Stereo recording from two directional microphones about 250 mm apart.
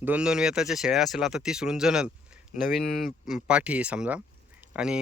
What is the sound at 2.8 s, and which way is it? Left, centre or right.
Speech, left.